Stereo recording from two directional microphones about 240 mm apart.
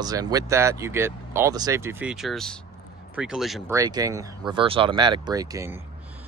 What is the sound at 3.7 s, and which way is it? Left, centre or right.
Speech, centre.